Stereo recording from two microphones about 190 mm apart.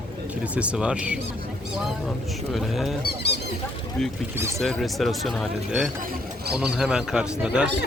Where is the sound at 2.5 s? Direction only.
Centre (ahead or behind).